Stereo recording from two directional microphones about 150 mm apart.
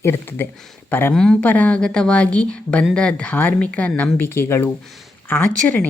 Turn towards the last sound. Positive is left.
turn(degrees=10)  # may be behind; listen again after turning